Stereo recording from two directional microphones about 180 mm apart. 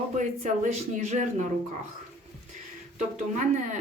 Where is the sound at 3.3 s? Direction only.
45° right (ahead or behind).